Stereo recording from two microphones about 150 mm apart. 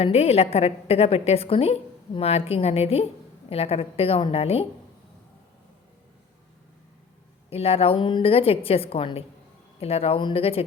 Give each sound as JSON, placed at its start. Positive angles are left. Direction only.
{"t": 0.0, "sound": "a woman's voice", "side_deg": 40}
{"t": 7.5, "sound": "a woman's voice", "side_deg": 40}